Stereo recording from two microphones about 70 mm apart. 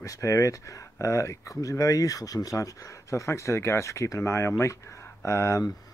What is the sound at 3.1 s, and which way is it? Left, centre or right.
Speech, left.